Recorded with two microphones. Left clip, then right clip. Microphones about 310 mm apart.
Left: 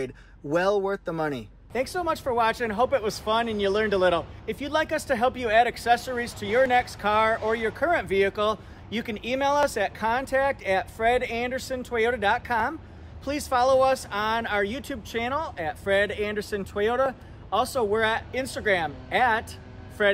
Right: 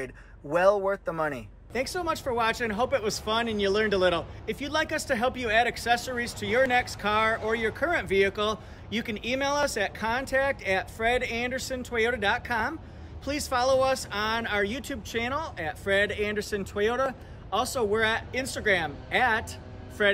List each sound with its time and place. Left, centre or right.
1.3 s speech: centre